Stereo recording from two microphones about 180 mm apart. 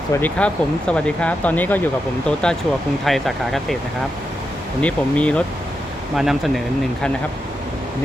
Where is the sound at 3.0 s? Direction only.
Centre (ahead or behind).